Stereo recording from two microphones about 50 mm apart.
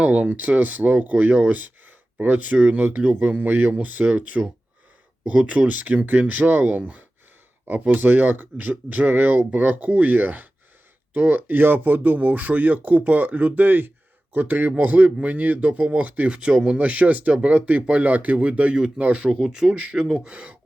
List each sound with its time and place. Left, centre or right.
0.0 s speech: right
16.3 s speech: centre
16.7 s speech: right